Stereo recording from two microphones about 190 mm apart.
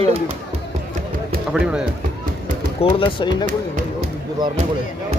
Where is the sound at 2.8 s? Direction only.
25° left (ahead or behind).